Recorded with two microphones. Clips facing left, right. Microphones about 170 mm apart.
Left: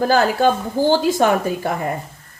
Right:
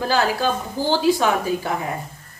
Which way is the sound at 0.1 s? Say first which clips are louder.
Left 3 dB; 50° left (ahead or behind).